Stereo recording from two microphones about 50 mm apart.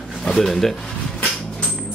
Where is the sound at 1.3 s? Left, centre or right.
Centre.